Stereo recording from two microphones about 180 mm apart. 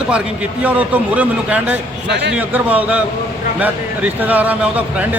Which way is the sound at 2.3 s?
10° right (ahead or behind).